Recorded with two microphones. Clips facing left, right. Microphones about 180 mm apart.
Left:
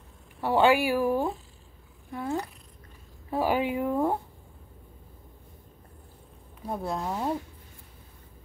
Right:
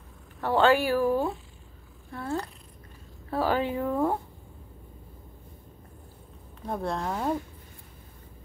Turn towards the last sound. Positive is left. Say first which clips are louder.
# right 1 dB
turn(degrees=5)  # may be behind; listen again after turning